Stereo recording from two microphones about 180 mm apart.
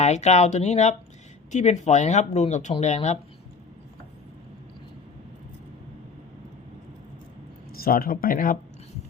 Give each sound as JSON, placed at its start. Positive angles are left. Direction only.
{"t": 0.0, "sound": "speech", "side_deg": 40}
{"t": 7.7, "sound": "speech", "side_deg": 55}